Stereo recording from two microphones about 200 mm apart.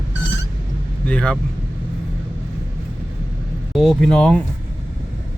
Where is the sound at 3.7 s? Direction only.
Centre (ahead or behind).